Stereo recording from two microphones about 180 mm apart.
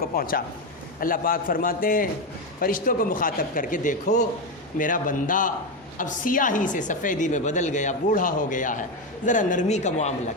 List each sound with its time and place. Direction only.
0.0 s a man's voice: 55° left (ahead or behind)